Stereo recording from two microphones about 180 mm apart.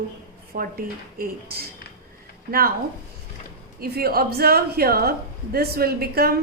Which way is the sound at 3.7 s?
60° right (ahead or behind).